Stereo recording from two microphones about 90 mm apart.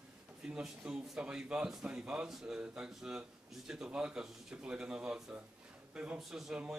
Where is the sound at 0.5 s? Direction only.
10° right (ahead or behind).